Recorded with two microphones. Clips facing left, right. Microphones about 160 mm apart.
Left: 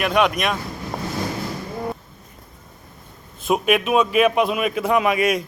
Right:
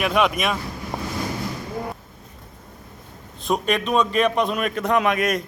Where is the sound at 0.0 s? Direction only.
Centre (ahead or behind).